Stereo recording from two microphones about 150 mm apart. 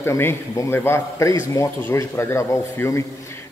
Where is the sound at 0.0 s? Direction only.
15° left (ahead or behind).